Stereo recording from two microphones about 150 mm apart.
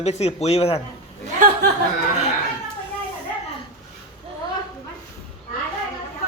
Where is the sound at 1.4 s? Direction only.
60° right (ahead or behind).